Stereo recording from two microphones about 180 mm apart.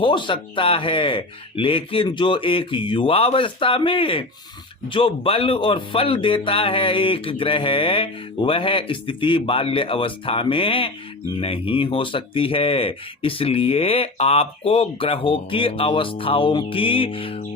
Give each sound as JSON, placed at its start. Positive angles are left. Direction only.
{"t": 0.0, "sound": "speech", "side_deg": 25}